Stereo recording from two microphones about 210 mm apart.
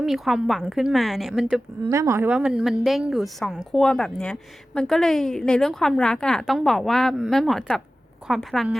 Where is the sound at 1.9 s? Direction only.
15° right (ahead or behind).